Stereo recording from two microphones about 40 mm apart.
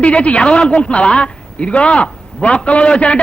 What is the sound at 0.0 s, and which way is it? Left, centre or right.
A man's voice, left.